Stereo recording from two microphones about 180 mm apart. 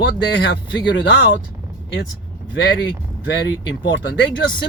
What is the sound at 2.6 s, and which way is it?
Speech, 70° left (ahead or behind).